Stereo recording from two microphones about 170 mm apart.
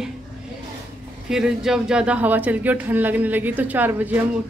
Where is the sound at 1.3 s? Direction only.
5° right (ahead or behind).